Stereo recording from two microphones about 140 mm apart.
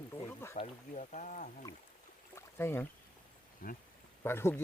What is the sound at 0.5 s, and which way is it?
Speech, 55° left (ahead or behind).